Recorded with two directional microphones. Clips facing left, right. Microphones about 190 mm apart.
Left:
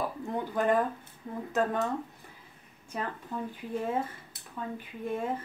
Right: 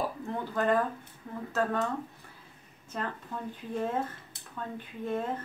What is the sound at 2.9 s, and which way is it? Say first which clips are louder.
Speech: even; 10° left (ahead or behind).